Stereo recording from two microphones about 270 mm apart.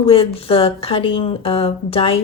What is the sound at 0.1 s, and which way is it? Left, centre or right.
Speech, left.